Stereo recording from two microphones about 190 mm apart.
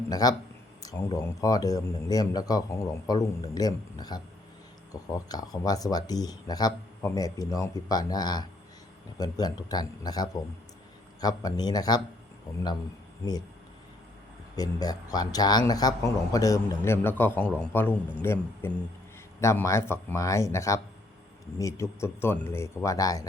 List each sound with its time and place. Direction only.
0.1 s speech: 20° left (ahead or behind)
14.5 s speech: 20° left (ahead or behind)